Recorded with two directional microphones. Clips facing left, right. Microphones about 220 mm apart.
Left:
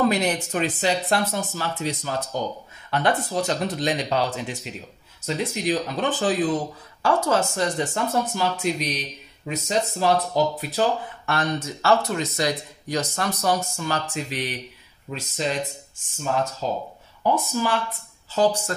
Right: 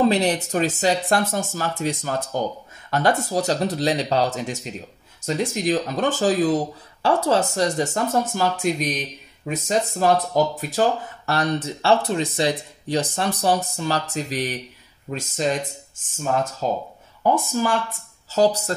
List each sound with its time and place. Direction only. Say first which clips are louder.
0.0 s speech: right 3 dB; 35° right (ahead or behind)
16.6 s speech: right 3 dB; 45° right (ahead or behind)